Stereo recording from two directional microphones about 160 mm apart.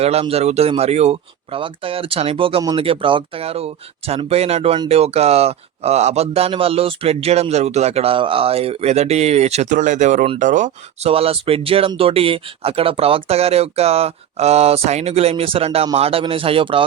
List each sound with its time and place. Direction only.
0.0 s speech: 40° right (ahead or behind)
11.1 s speech: 35° right (ahead or behind)